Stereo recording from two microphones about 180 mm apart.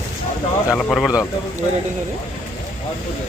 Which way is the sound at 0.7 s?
Centre (ahead or behind).